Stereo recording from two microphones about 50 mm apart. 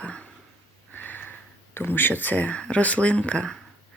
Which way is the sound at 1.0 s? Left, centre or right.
Left.